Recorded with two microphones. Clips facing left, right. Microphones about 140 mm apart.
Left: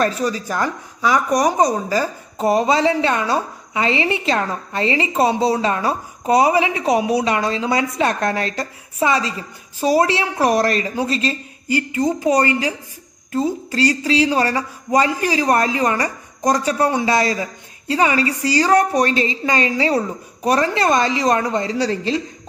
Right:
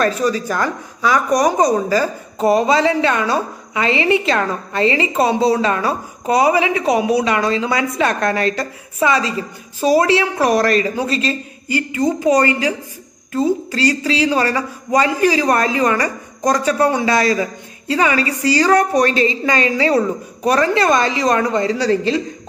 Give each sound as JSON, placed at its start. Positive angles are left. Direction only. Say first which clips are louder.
{"t": 0.0, "sound": "a woman's voice", "louder": "right 3 dB", "side_deg": 25}